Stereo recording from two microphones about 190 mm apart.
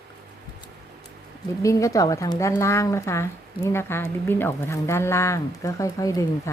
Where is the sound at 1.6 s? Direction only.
15° left (ahead or behind).